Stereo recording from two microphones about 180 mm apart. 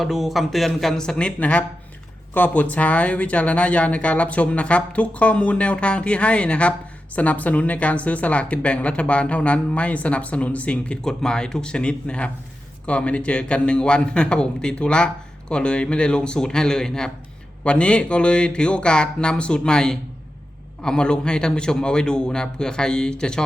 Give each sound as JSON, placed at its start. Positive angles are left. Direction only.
{"t": 0.0, "sound": "a man's voice", "side_deg": 0}